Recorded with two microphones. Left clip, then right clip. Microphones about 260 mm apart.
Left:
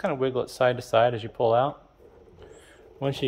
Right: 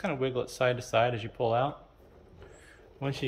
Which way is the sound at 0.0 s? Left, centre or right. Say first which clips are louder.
Left 5 dB; left.